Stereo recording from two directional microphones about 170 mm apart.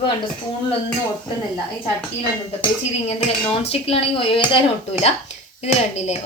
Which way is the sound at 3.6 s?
35° left (ahead or behind).